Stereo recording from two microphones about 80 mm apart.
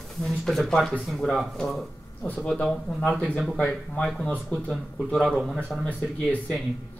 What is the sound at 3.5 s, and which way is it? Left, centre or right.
Speech, centre.